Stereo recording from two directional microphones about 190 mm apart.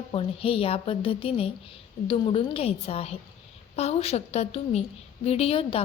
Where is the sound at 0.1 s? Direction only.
30° left (ahead or behind).